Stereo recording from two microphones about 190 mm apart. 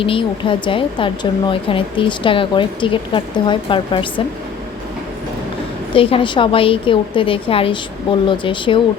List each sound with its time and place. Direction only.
0.0 s speech: 25° left (ahead or behind)
5.9 s speech: 30° left (ahead or behind)